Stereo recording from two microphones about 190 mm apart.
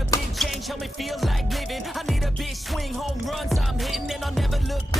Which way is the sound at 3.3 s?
Centre (ahead or behind).